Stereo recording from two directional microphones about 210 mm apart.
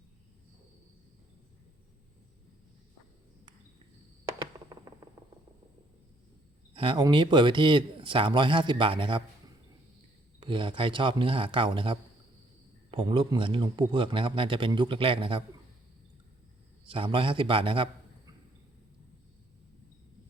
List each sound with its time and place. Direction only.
4.3 s a sound: 15° right (ahead or behind)
6.7 s a man's voice: 25° right (ahead or behind)
10.4 s a man's voice: 25° right (ahead or behind)
16.8 s a man's voice: 25° right (ahead or behind)